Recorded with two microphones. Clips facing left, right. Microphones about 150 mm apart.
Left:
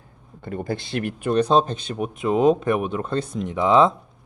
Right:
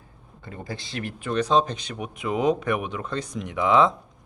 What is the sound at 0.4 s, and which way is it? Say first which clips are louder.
Speech: left 8 dB; 55° left (ahead or behind).